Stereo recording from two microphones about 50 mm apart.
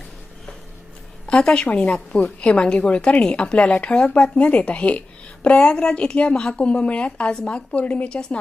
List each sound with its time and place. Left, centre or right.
1.3 s a woman's voice: centre